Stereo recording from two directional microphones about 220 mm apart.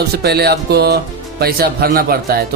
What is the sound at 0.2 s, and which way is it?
Speech, 45° right (ahead or behind).